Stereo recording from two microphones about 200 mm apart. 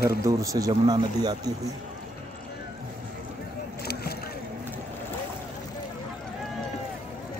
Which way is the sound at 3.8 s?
50° left (ahead or behind).